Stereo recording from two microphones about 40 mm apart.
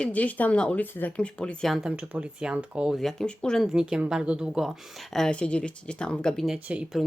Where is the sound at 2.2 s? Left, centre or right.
Right.